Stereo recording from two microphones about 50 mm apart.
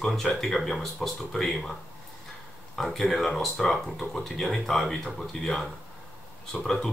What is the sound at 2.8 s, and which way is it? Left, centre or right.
Speech, centre.